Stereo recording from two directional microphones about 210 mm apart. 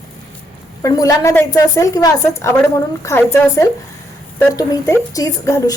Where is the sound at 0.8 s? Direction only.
15° left (ahead or behind).